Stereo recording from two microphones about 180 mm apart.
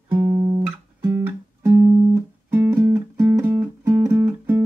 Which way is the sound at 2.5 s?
15° right (ahead or behind).